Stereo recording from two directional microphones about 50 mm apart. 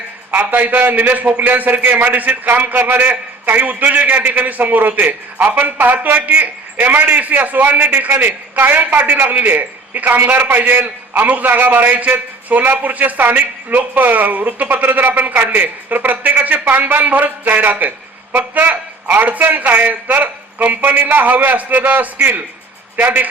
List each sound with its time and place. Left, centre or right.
0.3 s a man's voice: right
9.4 s a man's voice: right